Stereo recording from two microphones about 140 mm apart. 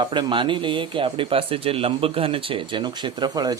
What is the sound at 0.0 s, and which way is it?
Speech, 35° right (ahead or behind).